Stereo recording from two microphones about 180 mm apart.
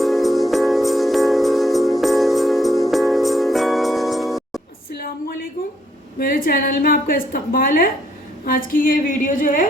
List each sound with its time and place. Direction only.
0.0 s music: centre (ahead or behind)
6.1 s a woman's voice: 50° left (ahead or behind)